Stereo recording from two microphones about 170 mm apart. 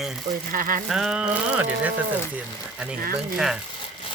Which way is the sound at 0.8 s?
Centre (ahead or behind).